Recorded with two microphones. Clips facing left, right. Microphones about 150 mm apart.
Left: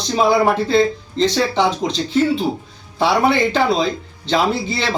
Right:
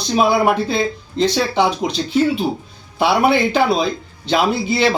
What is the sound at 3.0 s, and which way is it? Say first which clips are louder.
Speech: right 1 dB; 10° right (ahead or behind).